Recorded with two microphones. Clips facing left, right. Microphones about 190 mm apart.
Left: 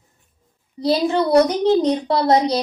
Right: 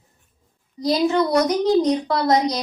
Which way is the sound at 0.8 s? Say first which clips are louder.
Left 1 dB; 30° left (ahead or behind).